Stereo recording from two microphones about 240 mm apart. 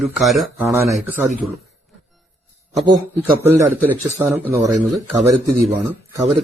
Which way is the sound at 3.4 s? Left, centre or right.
Centre.